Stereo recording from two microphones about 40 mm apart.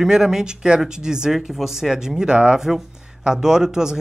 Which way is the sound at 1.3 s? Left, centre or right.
Centre.